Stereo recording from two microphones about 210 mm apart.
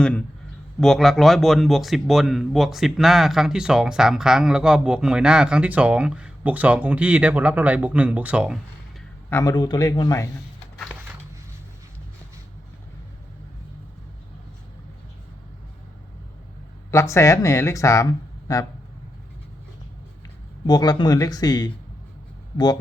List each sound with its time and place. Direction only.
0.8 s a man's voice: centre (ahead or behind)
9.3 s speech: 15° left (ahead or behind)
16.9 s speech: 15° left (ahead or behind)
20.7 s speech: 20° left (ahead or behind)